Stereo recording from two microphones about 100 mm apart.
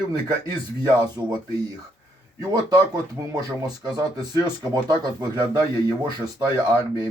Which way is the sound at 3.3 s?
40° right (ahead or behind).